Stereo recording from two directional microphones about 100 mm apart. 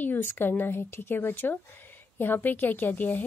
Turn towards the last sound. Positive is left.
turn(degrees=20)  # may be behind; listen again after turning